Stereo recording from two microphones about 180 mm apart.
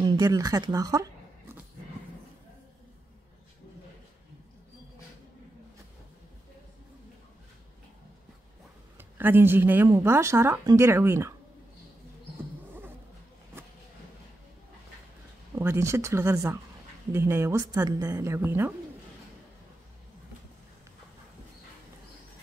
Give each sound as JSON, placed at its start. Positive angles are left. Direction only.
{"t": 0.0, "sound": "speech", "side_deg": -20}
{"t": 8.9, "sound": "speech", "side_deg": -10}
{"t": 15.5, "sound": "speech", "side_deg": -15}